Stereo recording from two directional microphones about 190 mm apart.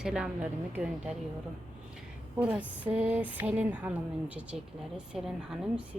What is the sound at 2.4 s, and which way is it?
Speech, 5° right (ahead or behind).